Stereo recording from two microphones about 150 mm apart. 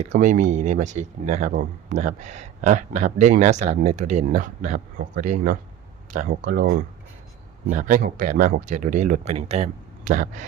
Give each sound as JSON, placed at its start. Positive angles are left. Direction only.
{"t": 0.0, "sound": "speech", "side_deg": -55}
{"t": 7.7, "sound": "speech", "side_deg": -60}